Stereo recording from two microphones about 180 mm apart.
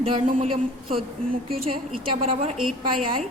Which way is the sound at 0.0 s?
30° right (ahead or behind).